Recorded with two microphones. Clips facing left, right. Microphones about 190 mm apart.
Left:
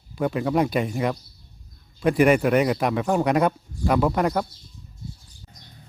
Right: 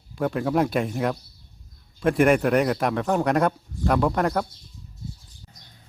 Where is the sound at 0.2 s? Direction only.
Centre (ahead or behind).